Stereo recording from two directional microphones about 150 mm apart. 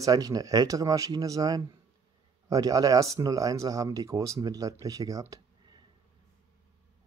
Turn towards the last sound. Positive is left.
turn(degrees=-25)  # may be behind; listen again after turning